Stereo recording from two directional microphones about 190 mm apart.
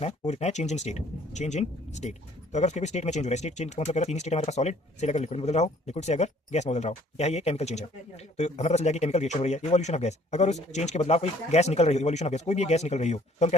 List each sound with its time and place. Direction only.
0.0 s speech: 35° left (ahead or behind)